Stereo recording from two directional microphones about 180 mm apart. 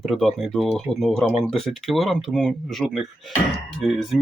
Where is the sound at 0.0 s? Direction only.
Centre (ahead or behind).